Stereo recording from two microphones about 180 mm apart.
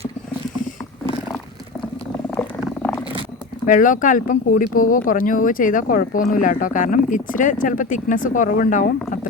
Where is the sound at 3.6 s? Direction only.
50° left (ahead or behind).